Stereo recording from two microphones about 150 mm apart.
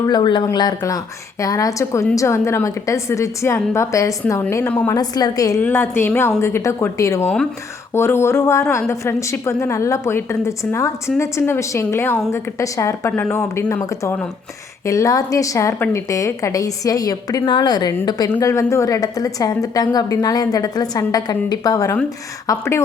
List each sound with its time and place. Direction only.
0.0 s a woman's voice: 30° left (ahead or behind); by 4.9 s 10° left (ahead or behind)
4.9 s a woman's voice: 25° left (ahead or behind)
5.5 s a woman's voice: 15° left (ahead or behind)